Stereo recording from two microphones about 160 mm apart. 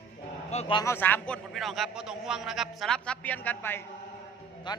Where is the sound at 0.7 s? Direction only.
15° left (ahead or behind).